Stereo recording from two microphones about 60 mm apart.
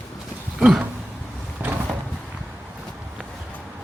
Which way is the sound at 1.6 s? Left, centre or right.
Right.